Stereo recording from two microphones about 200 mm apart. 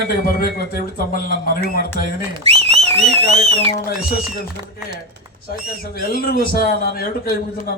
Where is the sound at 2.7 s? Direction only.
30° right (ahead or behind).